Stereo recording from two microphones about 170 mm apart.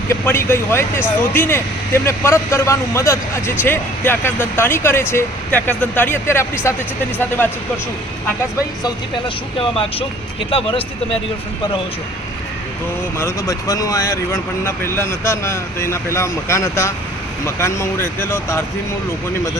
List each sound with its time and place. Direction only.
0.1 s speech: 15° left (ahead or behind)
10.5 s speech: 30° left (ahead or behind)
13.1 s speech: 15° left (ahead or behind)